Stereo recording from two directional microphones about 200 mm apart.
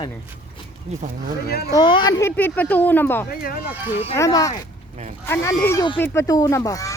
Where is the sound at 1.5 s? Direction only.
50° left (ahead or behind).